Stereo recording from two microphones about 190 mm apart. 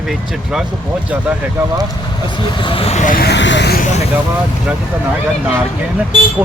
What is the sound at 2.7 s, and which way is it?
Speech, 30° left (ahead or behind).